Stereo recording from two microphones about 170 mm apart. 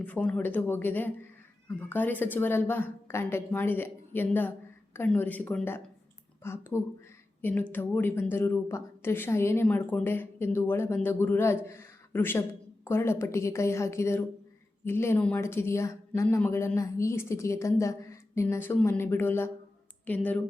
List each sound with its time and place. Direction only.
0.0 s speech: 5° left (ahead or behind)